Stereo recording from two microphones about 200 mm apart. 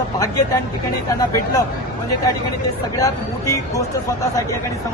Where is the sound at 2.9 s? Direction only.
15° left (ahead or behind).